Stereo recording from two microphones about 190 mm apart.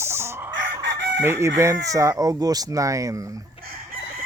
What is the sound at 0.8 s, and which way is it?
Chicken, 65° right (ahead or behind).